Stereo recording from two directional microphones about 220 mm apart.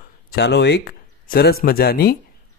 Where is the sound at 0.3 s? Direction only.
50° left (ahead or behind).